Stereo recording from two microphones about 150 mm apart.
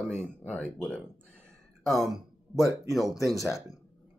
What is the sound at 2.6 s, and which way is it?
Speech, 20° left (ahead or behind).